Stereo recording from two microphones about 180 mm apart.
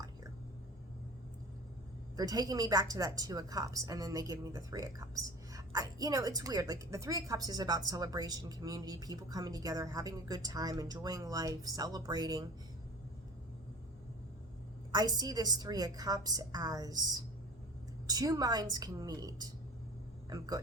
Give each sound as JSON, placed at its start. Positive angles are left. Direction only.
{"t": 2.1, "sound": "a woman's voice", "side_deg": -20}
{"t": 14.9, "sound": "a woman's voice", "side_deg": -20}